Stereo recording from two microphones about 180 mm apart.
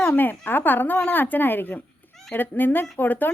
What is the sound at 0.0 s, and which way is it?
A woman's voice, 10° left (ahead or behind).